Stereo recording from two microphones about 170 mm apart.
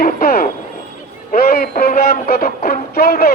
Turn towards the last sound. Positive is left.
turn(degrees=65)  # may be behind; listen again after turning